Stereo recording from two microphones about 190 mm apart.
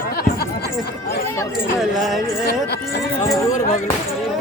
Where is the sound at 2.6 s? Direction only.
60° left (ahead or behind).